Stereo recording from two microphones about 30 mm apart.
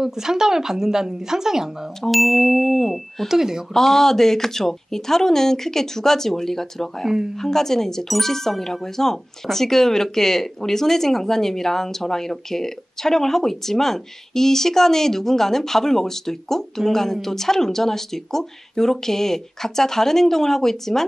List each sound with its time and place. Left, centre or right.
0.0 s speech: centre
2.0 s speech: centre
3.3 s speech: centre
3.7 s speech: centre